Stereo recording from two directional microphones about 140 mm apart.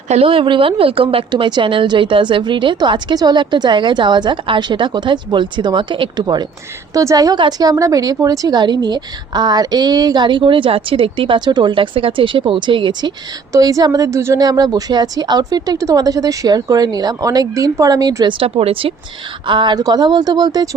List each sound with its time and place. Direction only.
0.1 s a woman's voice: 40° right (ahead or behind)
18.3 s a woman's voice: 45° right (ahead or behind); by 20.7 s 30° right (ahead or behind)